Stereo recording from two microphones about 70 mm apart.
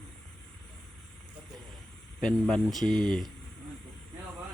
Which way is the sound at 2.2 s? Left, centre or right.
Centre.